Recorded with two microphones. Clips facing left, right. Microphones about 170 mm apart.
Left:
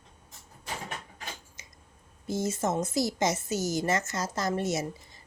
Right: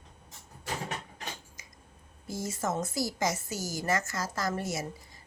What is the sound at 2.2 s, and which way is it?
Speech, 20° left (ahead or behind).